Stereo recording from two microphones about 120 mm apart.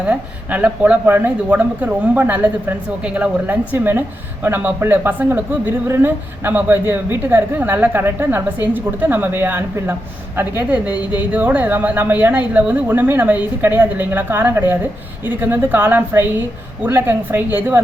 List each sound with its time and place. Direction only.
0.0 s a woman's voice: 10° right (ahead or behind)